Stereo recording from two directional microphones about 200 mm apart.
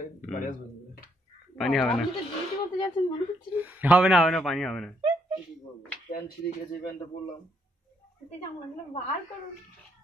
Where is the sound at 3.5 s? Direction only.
10° right (ahead or behind).